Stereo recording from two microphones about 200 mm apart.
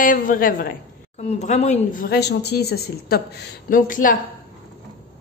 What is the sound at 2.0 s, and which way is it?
A woman's voice, 55° left (ahead or behind).